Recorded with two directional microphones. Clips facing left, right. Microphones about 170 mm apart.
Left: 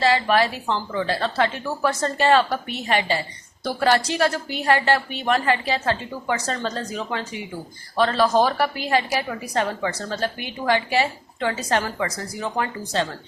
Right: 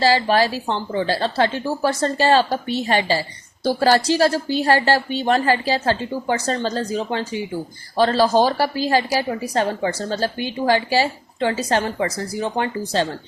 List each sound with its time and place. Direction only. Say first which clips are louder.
0.0 s a woman's voice: right 2 dB; 30° right (ahead or behind)